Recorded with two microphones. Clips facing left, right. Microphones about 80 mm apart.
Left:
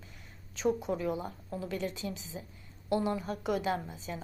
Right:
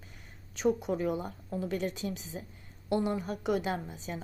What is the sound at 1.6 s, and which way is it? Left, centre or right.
A woman's voice, right.